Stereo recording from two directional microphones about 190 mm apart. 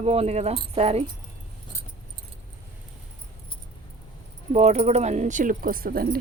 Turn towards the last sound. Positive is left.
turn(degrees=-50)  # may be behind; listen again after turning